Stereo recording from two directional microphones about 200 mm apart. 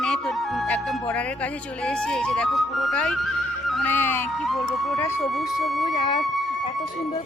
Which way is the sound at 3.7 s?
5° left (ahead or behind).